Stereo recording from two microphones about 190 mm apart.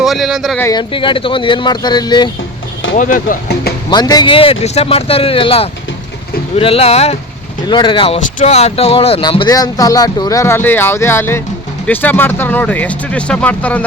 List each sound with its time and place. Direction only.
0.0 s speech: centre (ahead or behind)
0.6 s speech: 20° left (ahead or behind)
2.9 s speech: 45° left (ahead or behind)
3.8 s speech: 20° left (ahead or behind)